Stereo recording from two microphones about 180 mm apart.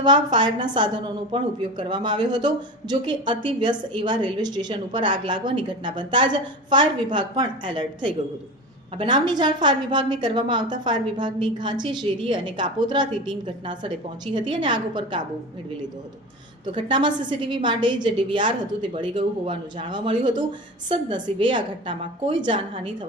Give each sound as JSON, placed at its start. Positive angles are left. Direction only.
{"t": 0.0, "sound": "a woman's voice", "side_deg": -25}
{"t": 16.7, "sound": "a woman's voice", "side_deg": -25}